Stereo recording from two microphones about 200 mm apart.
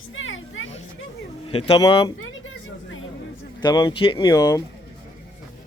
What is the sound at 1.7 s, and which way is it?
Speech, 20° left (ahead or behind).